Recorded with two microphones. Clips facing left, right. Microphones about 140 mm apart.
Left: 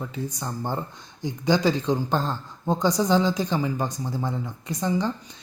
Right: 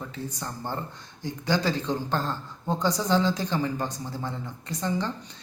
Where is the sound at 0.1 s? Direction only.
15° left (ahead or behind).